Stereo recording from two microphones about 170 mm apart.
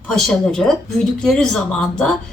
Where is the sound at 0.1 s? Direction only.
5° left (ahead or behind).